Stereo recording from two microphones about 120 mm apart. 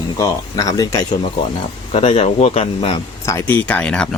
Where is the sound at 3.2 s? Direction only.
20° left (ahead or behind).